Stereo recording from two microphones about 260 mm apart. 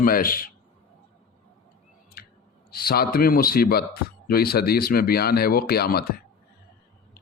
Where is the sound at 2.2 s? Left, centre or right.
Left.